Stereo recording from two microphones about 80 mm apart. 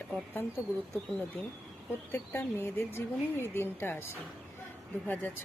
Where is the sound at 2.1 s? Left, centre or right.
Left.